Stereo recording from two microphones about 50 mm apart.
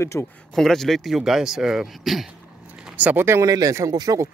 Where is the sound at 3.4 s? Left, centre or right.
Right.